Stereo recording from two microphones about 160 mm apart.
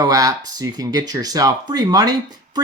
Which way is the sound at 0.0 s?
20° right (ahead or behind).